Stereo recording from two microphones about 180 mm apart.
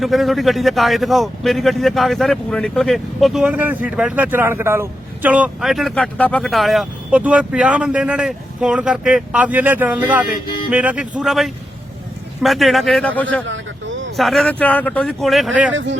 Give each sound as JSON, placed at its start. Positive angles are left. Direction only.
{"t": 0.0, "sound": "a man's voice", "side_deg": 0}
{"t": 13.5, "sound": "vehicle", "side_deg": -90}
{"t": 14.2, "sound": "a man's voice", "side_deg": 0}